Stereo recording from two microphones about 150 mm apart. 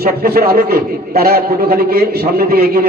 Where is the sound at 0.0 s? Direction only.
90° right.